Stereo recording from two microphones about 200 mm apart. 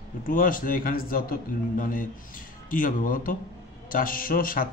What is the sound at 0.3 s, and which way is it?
A man's voice, 45° left (ahead or behind).